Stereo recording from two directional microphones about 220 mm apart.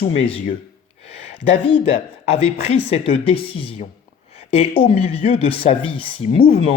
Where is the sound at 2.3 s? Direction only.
30° left (ahead or behind).